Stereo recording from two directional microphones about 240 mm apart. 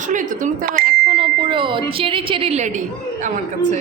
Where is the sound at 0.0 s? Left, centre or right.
Right.